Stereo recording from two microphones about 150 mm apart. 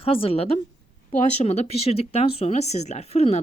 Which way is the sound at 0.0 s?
40° left (ahead or behind).